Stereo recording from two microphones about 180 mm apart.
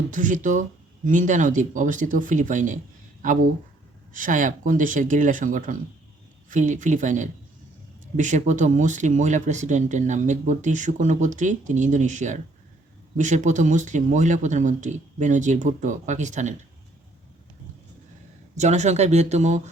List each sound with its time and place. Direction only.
0.1 s speech: 45° right (ahead or behind)
18.5 s speech: 40° right (ahead or behind)